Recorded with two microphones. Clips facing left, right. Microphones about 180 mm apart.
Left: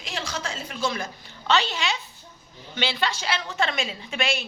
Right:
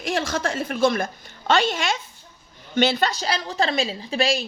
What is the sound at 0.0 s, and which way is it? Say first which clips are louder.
A woman's voice: right 8 dB; 55° right (ahead or behind).